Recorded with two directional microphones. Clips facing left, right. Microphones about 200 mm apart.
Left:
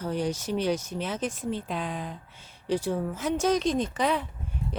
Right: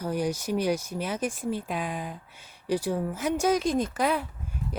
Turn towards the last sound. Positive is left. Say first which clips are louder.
# right 1 dB
turn(degrees=-5)  # may be behind; listen again after turning